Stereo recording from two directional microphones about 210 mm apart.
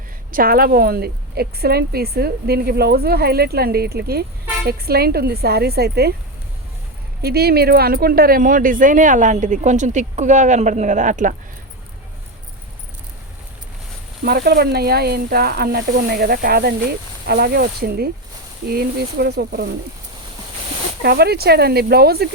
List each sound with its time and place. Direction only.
0.3 s a woman's voice: 45° right (ahead or behind)
7.2 s speech: 50° right (ahead or behind)
14.3 s a woman's voice: 50° right (ahead or behind)
21.0 s a woman's voice: 50° right (ahead or behind)